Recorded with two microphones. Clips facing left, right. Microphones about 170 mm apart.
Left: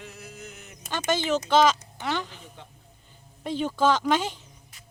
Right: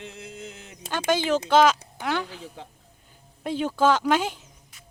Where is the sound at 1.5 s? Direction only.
10° right (ahead or behind).